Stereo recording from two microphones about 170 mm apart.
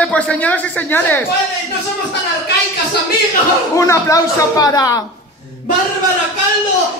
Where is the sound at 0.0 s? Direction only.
5° left (ahead or behind).